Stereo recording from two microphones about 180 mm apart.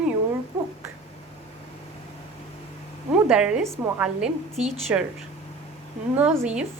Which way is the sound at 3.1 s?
5° right (ahead or behind).